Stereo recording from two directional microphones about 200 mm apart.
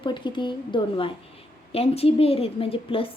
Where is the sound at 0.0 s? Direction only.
25° left (ahead or behind).